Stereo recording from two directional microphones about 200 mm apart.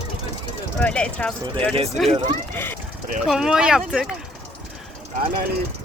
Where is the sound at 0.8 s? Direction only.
5° left (ahead or behind).